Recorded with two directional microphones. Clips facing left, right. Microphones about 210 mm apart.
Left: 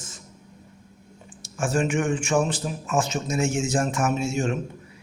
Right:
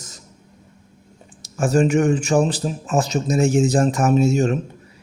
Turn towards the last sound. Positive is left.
turn(degrees=-40)  # may be behind; listen again after turning